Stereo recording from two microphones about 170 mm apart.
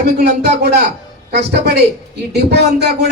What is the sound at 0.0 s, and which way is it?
A man's voice, 75° right (ahead or behind).